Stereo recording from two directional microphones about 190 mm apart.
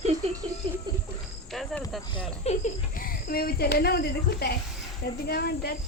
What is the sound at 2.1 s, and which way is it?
Speech, 35° left (ahead or behind).